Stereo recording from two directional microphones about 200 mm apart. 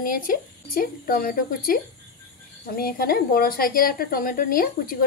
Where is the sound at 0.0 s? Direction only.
45° left (ahead or behind).